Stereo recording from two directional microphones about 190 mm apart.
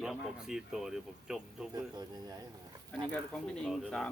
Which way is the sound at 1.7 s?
20° right (ahead or behind).